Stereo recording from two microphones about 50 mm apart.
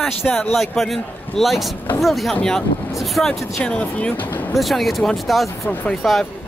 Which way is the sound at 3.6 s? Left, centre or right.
Left.